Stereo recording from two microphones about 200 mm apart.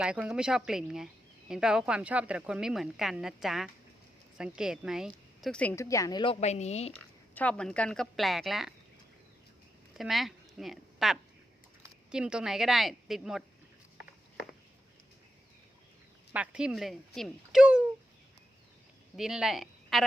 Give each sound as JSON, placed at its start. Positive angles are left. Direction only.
{"t": 0.0, "sound": "speech", "side_deg": -5}
{"t": 6.4, "sound": "speech", "side_deg": 35}
{"t": 6.9, "sound": "speech", "side_deg": 5}
{"t": 9.9, "sound": "speech", "side_deg": 0}
{"t": 16.3, "sound": "speech", "side_deg": -5}
{"t": 19.1, "sound": "speech", "side_deg": 0}